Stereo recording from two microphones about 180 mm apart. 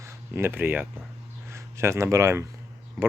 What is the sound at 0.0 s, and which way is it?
Speech, 15° right (ahead or behind).